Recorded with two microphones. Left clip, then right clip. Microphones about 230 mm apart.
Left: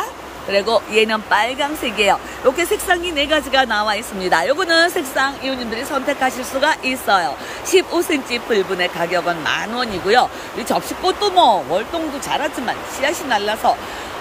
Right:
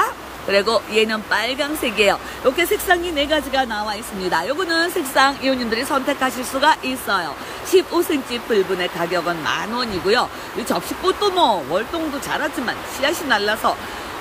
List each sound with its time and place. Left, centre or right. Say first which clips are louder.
0.0 s speech: right 5 dB; centre
5.4 s speech: right 3 dB; centre
6.0 s speech: left 2 dB; centre